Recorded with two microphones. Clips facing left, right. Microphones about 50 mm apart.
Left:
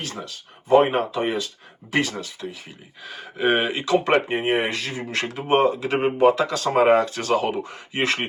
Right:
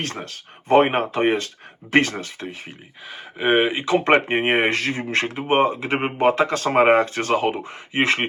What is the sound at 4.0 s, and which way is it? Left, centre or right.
Speech, right.